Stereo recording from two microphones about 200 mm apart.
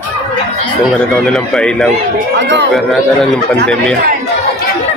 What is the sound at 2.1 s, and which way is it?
Speech, 60° right (ahead or behind).